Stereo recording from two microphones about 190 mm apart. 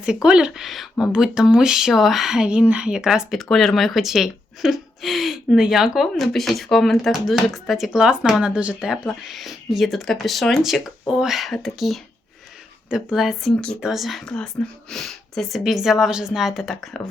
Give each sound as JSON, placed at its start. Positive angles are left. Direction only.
{"t": 0.0, "sound": "speech", "side_deg": -5}